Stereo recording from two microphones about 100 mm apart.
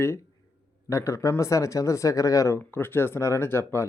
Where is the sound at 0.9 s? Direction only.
30° left (ahead or behind).